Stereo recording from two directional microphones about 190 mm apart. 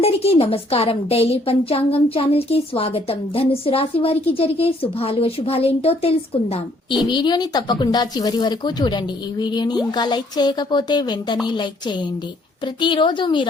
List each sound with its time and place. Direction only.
0.0 s a woman's voice: 30° left (ahead or behind)